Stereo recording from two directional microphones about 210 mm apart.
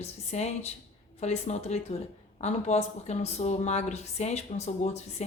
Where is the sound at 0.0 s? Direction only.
30° left (ahead or behind).